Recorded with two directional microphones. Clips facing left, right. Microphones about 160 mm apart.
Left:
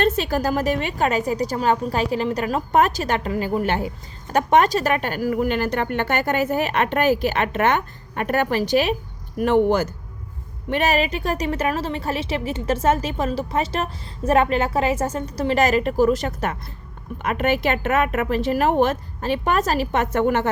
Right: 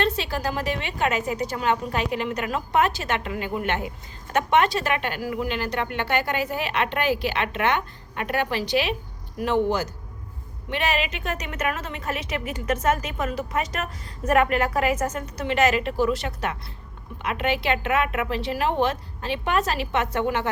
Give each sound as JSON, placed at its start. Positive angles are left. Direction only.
{"t": 0.0, "sound": "a woman's voice", "side_deg": 45}
{"t": 10.7, "sound": "a woman's voice", "side_deg": 45}